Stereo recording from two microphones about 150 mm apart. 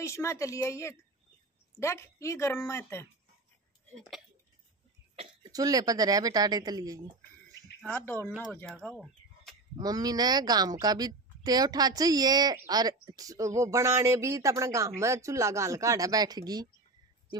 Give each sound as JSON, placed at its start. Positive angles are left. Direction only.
{"t": 0.0, "sound": "a woman's voice", "side_deg": 20}
{"t": 5.1, "sound": "throat clearing", "side_deg": -45}
{"t": 5.5, "sound": "speech", "side_deg": -25}
{"t": 7.9, "sound": "speech", "side_deg": 15}
{"t": 8.8, "sound": "chicken", "side_deg": 0}
{"t": 9.8, "sound": "speech", "side_deg": -25}